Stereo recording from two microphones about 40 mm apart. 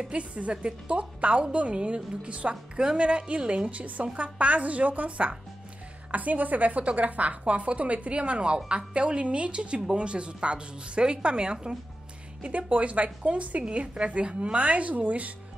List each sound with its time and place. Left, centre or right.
0.1 s a woman's voice: right
12.4 s a woman's voice: right